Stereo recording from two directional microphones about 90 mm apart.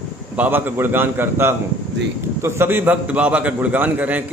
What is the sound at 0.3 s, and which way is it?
A man's voice, 20° right (ahead or behind).